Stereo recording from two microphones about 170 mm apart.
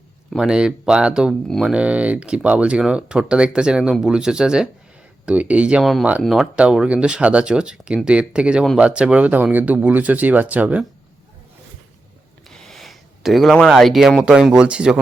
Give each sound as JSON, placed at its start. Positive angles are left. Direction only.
{"t": 0.3, "sound": "speech", "side_deg": -5}
{"t": 12.5, "sound": "speech", "side_deg": 0}